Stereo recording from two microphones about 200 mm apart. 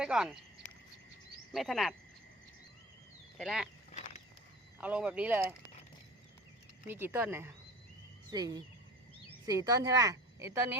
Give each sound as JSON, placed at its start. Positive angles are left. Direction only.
{"t": 0.0, "sound": "speech", "side_deg": -5}
{"t": 1.5, "sound": "speech", "side_deg": 0}
{"t": 3.3, "sound": "speech", "side_deg": 0}
{"t": 4.8, "sound": "a woman's voice", "side_deg": -5}
{"t": 6.8, "sound": "a woman's voice", "side_deg": -10}